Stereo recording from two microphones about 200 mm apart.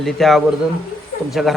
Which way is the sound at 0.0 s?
Centre (ahead or behind).